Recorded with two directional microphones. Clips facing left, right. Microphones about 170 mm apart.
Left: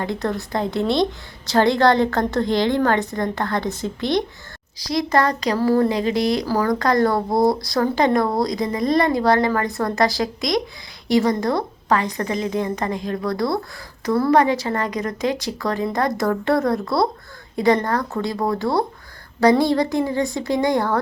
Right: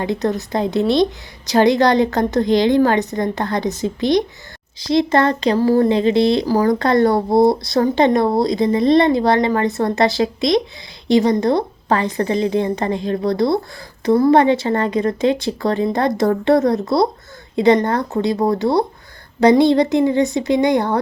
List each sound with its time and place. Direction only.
0.0 s a woman's voice: 20° right (ahead or behind)